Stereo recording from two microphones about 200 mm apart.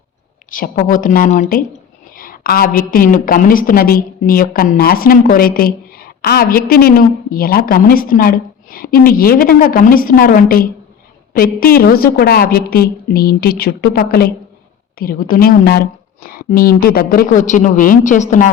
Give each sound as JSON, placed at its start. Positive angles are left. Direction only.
{"t": 0.5, "sound": "a woman's voice", "side_deg": 45}